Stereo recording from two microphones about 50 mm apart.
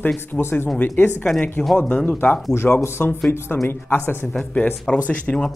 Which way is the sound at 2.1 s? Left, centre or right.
Left.